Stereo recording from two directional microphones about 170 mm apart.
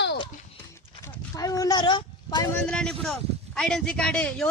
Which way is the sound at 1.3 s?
20° left (ahead or behind).